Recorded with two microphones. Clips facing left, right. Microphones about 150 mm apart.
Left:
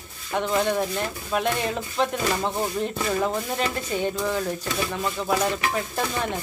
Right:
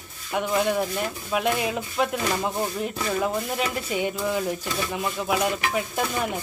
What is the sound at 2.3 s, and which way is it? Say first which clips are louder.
Speech: left 1 dB; 5° left (ahead or behind).